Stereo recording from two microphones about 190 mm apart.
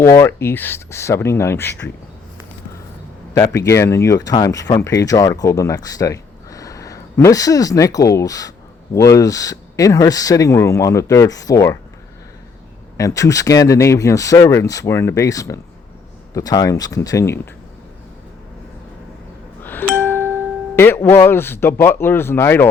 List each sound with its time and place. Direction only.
0.0 s speech: 15° left (ahead or behind)
3.3 s speech: 20° left (ahead or behind)
13.0 s speech: 15° left (ahead or behind)
20.0 s music: 10° left (ahead or behind)
20.7 s speech: 10° left (ahead or behind)